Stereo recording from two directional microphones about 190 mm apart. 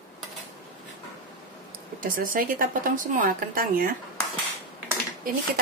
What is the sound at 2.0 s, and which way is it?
Speech, 45° right (ahead or behind).